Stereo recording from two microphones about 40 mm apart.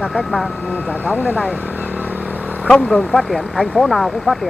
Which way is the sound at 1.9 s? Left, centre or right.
Right.